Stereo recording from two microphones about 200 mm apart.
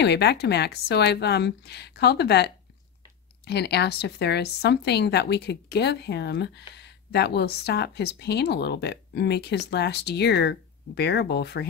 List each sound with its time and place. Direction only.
0.0 s speech: 55° left (ahead or behind)